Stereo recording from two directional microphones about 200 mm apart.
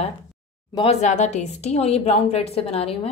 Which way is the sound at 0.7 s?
35° left (ahead or behind).